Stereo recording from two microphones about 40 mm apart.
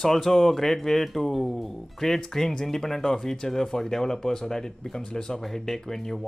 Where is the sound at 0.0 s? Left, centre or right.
Centre.